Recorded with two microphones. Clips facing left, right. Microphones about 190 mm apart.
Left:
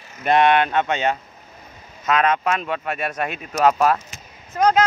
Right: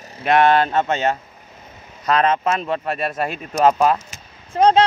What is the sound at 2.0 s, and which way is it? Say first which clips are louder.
Speech: right 2 dB; 35° right (ahead or behind).